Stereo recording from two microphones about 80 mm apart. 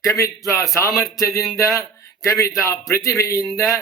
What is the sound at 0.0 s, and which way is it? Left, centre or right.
A man's voice, left.